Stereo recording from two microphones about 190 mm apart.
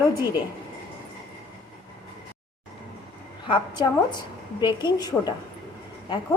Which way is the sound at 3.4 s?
25° left (ahead or behind).